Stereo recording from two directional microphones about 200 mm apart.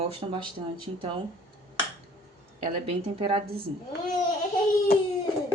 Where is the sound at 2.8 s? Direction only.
30° right (ahead or behind).